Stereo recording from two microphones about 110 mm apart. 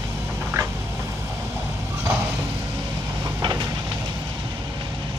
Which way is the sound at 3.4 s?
40° right (ahead or behind).